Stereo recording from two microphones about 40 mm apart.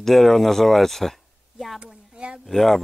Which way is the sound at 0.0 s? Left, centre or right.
Centre.